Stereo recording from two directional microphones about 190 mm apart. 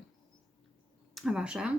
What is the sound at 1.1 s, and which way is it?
Speech, 5° right (ahead or behind).